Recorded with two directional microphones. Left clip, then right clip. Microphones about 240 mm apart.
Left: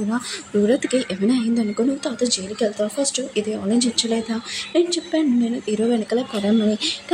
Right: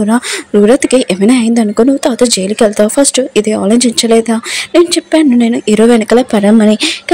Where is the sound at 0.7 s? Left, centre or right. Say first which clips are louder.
Right 12 dB; right.